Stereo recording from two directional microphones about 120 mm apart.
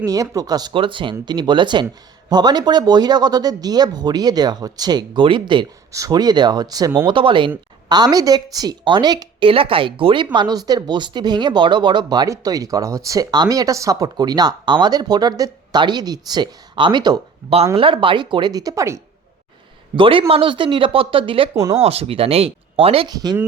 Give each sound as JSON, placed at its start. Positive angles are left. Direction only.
{"t": 0.0, "sound": "speech", "side_deg": -30}
{"t": 0.7, "sound": "speech", "side_deg": -45}
{"t": 5.9, "sound": "speech", "side_deg": -30}
{"t": 7.1, "sound": "speech", "side_deg": -45}
{"t": 9.5, "sound": "speech", "side_deg": -50}
{"t": 10.3, "sound": "speech", "side_deg": -35}
{"t": 17.4, "sound": "speech", "side_deg": -20}
{"t": 17.7, "sound": "speech", "side_deg": -45}
{"t": 20.0, "sound": "speech", "side_deg": -45}
{"t": 21.5, "sound": "speech", "side_deg": -30}
{"t": 21.8, "sound": "speech", "side_deg": -55}
{"t": 23.0, "sound": "speech", "side_deg": -35}